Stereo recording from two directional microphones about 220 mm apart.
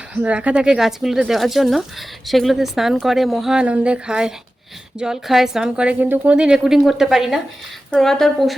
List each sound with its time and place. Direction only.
0.1 s speech: 5° right (ahead or behind)